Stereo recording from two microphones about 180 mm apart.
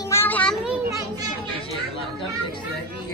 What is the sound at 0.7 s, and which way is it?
Children playing, 15° right (ahead or behind).